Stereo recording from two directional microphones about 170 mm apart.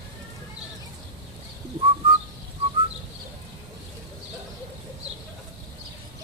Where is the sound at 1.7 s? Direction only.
35° right (ahead or behind).